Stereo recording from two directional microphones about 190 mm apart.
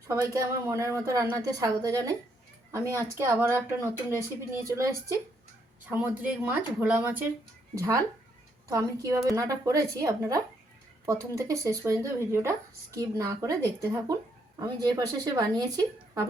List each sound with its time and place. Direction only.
0.1 s a woman's voice: 15° right (ahead or behind)